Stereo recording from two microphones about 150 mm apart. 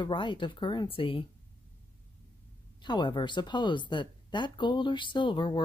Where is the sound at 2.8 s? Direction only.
30° left (ahead or behind).